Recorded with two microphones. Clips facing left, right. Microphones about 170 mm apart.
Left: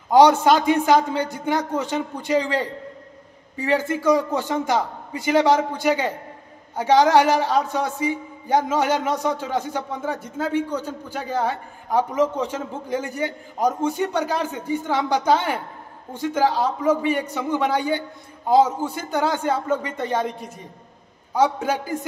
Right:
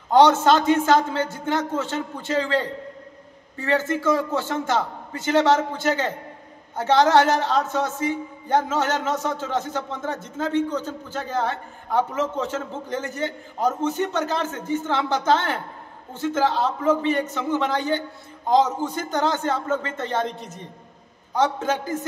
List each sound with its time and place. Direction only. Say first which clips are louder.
0.1 s a man's voice: left 1 dB; 10° left (ahead or behind)